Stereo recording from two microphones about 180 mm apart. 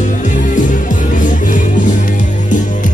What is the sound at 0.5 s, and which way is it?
Music, 45° left (ahead or behind).